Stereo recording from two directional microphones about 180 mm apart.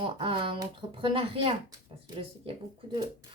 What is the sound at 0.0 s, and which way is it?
Speech, 30° right (ahead or behind).